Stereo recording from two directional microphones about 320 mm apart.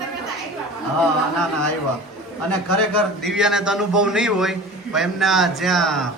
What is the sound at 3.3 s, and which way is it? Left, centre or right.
A man's voice, centre.